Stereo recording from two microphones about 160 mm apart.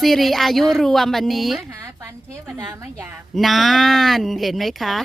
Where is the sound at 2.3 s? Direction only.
20° right (ahead or behind).